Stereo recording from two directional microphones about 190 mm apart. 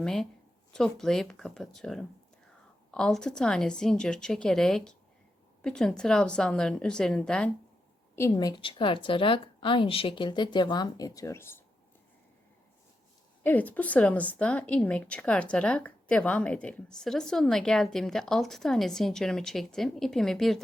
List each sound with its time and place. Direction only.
0.0 s a woman's voice: 5° left (ahead or behind)
8.1 s a woman's voice: 15° left (ahead or behind)
13.4 s a woman's voice: 10° left (ahead or behind)